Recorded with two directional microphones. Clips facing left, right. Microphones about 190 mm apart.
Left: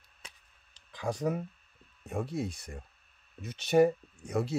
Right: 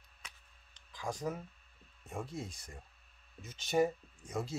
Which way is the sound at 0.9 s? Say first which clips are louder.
Left 7 dB; 65° left (ahead or behind).